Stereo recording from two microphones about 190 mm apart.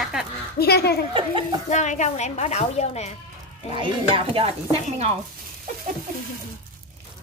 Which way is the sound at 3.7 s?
30° right (ahead or behind).